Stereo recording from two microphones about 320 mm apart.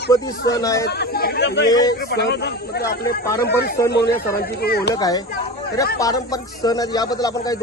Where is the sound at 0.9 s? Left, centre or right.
Left.